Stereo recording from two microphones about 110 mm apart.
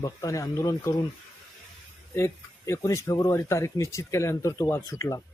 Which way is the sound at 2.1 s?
25° left (ahead or behind).